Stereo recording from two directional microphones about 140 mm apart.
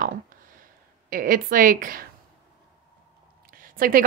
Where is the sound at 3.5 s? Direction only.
90° right.